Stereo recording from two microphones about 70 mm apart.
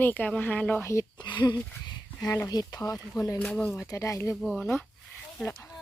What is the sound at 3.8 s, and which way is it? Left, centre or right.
Speech, left.